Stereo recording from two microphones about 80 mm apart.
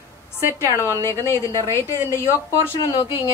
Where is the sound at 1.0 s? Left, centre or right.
Left.